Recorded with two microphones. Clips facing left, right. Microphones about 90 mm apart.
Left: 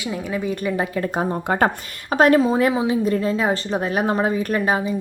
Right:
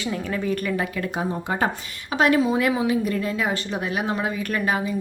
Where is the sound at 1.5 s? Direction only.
55° left (ahead or behind).